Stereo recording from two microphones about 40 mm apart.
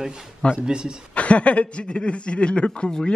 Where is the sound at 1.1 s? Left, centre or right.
Left.